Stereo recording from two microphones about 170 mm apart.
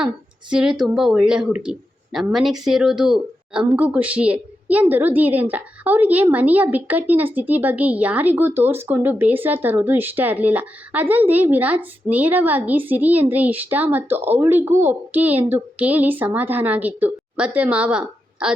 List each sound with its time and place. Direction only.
0.5 s a woman's voice: 5° right (ahead or behind)